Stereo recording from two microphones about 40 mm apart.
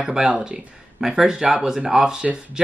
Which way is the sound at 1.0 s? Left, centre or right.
Centre.